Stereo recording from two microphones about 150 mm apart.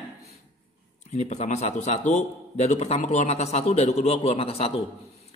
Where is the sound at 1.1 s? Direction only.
45° left (ahead or behind).